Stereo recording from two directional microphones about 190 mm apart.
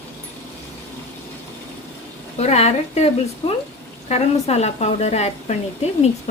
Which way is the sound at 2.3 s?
35° left (ahead or behind).